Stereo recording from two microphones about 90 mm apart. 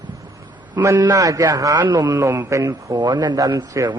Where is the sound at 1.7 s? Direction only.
55° right (ahead or behind).